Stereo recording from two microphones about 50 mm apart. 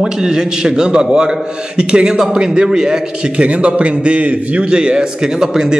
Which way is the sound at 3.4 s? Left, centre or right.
Right.